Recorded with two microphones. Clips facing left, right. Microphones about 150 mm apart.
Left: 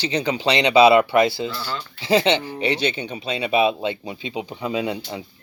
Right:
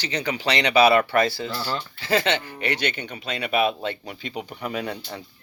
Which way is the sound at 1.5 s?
35° right (ahead or behind).